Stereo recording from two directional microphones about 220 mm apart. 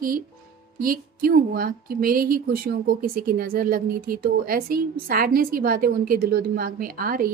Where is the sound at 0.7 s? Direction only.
40° right (ahead or behind).